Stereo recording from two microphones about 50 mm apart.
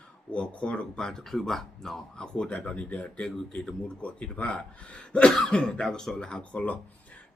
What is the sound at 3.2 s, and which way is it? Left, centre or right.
Speech, centre.